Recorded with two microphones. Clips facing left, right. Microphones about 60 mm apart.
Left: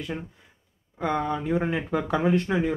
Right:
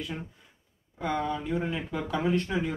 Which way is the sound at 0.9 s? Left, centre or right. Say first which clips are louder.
Left 3 dB; left.